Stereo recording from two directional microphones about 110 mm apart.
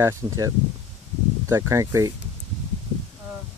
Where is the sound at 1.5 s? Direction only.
30° right (ahead or behind).